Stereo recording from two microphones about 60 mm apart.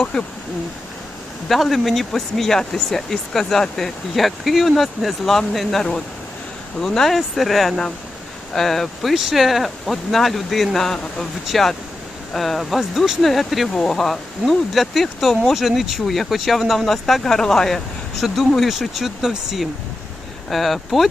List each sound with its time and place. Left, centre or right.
0.0 s speech: centre
1.5 s speech: centre